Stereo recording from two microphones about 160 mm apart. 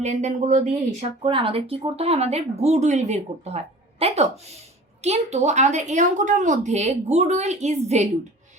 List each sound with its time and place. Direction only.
0.0 s a woman's voice: 45° right (ahead or behind)
1.2 s a woman's voice: 35° right (ahead or behind)